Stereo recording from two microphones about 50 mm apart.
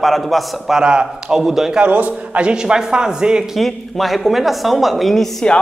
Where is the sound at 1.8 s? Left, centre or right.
Right.